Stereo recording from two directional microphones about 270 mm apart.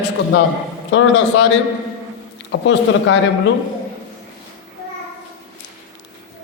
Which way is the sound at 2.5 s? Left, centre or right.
Left.